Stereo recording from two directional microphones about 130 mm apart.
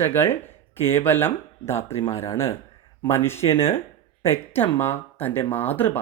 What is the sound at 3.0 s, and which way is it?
Speech, 20° left (ahead or behind).